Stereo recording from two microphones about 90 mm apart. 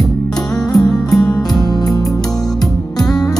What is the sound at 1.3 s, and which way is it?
Music, 45° left (ahead or behind).